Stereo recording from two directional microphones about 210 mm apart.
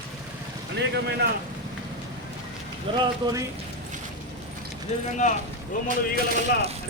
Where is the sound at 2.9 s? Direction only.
25° right (ahead or behind).